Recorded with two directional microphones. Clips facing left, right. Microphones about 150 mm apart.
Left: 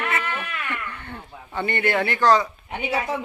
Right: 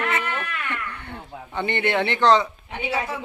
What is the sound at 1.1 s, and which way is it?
Speech, 15° right (ahead or behind).